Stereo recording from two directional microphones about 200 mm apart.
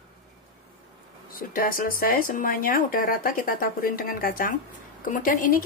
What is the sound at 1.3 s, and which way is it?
A woman's voice, 45° left (ahead or behind).